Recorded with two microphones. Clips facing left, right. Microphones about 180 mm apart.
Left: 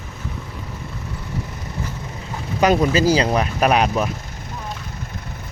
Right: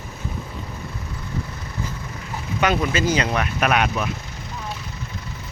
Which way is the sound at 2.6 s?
40° left (ahead or behind).